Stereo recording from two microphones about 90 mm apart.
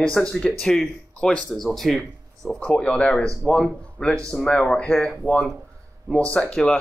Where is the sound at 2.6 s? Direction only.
10° left (ahead or behind).